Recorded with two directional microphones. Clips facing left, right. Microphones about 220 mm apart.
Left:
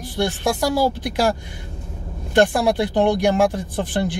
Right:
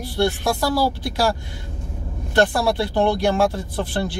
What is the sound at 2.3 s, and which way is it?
Speech, 15° left (ahead or behind).